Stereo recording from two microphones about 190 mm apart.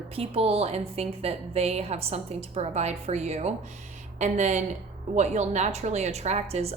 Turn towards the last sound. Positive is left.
turn(degrees=-35)  # may be behind; listen again after turning